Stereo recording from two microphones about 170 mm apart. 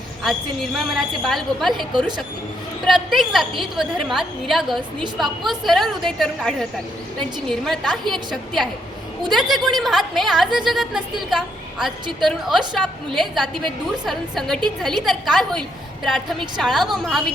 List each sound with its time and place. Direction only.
0.2 s a woman's voice: centre (ahead or behind)
2.0 s speech: 25° right (ahead or behind)
2.8 s a woman's voice: centre (ahead or behind)
9.3 s a woman's voice: centre (ahead or behind)